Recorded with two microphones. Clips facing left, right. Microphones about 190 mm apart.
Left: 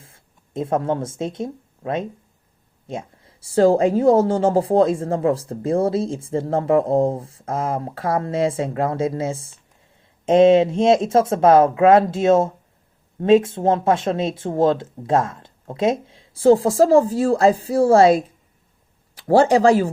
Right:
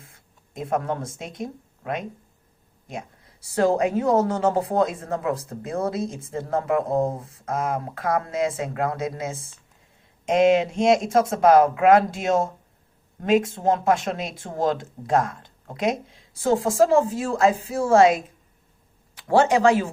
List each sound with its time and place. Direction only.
0.1 s a woman's voice: 25° left (ahead or behind)